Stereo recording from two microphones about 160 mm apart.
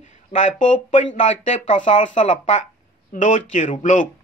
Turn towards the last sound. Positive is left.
turn(degrees=50)  # may be behind; listen again after turning